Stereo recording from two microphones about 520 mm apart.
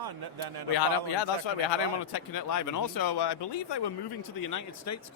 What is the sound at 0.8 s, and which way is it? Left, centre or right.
Speech, left.